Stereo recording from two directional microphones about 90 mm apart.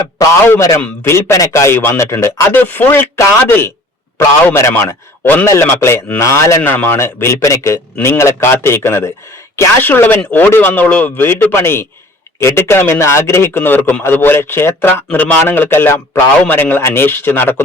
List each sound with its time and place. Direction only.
0.4 s a man's voice: 25° left (ahead or behind)